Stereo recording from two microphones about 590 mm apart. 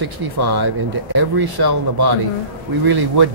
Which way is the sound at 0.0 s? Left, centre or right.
Right.